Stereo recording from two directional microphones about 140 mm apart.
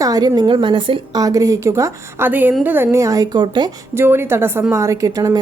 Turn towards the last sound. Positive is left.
turn(degrees=-25)  # may be behind; listen again after turning